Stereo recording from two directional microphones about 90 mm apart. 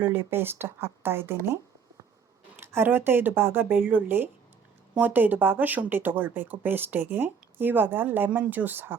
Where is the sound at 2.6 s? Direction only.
25° right (ahead or behind).